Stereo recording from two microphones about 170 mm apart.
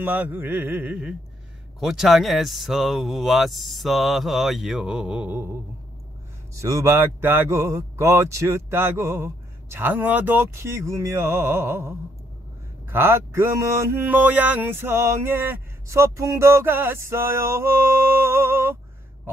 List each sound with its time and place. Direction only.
0.0 s mantra: 10° right (ahead or behind)
1.8 s speech: centre (ahead or behind)
6.5 s mantra: 15° right (ahead or behind)